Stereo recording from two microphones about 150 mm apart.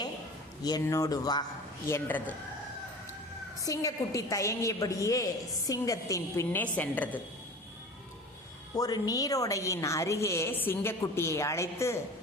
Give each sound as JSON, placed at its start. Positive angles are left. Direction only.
{"t": 0.6, "sound": "a woman's voice", "side_deg": 25}
{"t": 1.9, "sound": "speech", "side_deg": 10}
{"t": 3.6, "sound": "a woman's voice", "side_deg": 25}
{"t": 8.7, "sound": "a woman's voice", "side_deg": 25}